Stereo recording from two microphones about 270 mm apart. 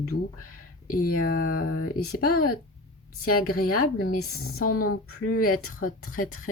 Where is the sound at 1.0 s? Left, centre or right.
Left.